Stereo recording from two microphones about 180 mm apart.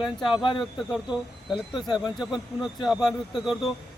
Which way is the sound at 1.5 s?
25° left (ahead or behind).